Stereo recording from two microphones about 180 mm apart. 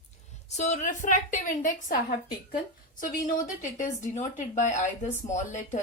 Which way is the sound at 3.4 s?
45° left (ahead or behind).